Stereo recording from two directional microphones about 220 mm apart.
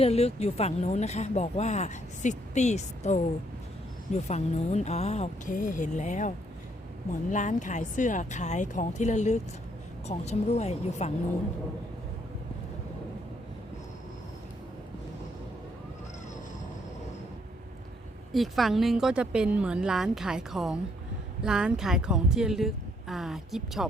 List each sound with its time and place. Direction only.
0.0 s speech: 30° left (ahead or behind)
18.3 s a woman's voice: centre (ahead or behind)